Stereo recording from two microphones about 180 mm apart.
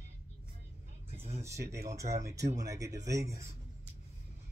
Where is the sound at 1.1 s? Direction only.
35° right (ahead or behind).